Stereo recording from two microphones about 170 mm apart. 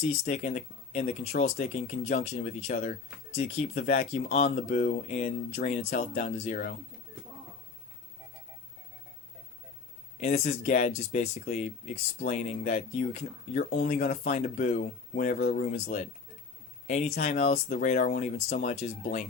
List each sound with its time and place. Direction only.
0.1 s speech: 45° left (ahead or behind)
10.2 s speech: 40° left (ahead or behind)